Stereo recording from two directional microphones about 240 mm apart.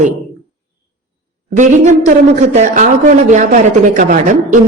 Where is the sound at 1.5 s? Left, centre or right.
Right.